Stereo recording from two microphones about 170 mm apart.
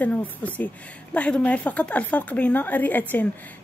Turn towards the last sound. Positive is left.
turn(degrees=10)  # may be behind; listen again after turning